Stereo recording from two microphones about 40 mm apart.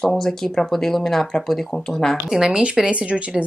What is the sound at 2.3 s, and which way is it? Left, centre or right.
Speech, centre.